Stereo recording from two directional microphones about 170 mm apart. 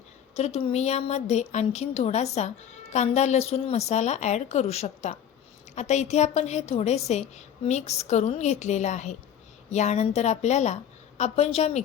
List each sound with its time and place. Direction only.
0.3 s a woman's voice: 35° left (ahead or behind)